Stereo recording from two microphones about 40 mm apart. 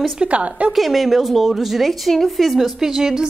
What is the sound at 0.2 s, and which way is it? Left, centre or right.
Speech, right.